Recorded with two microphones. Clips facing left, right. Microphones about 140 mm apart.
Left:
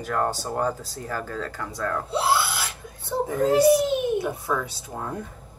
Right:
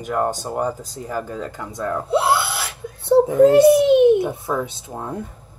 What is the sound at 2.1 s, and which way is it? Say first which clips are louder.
Wail: right 5 dB; 60° right (ahead or behind).